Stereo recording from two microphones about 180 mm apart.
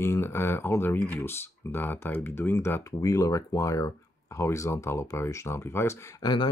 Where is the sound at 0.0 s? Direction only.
15° left (ahead or behind).